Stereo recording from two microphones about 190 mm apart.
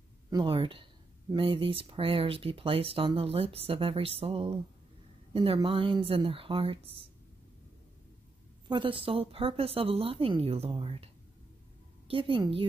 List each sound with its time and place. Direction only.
0.3 s speech: 25° right (ahead or behind)
8.6 s speech: 25° right (ahead or behind)
12.1 s speech: 30° right (ahead or behind)